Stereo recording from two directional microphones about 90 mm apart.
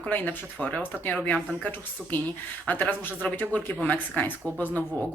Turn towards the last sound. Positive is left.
turn(degrees=20)  # may be behind; listen again after turning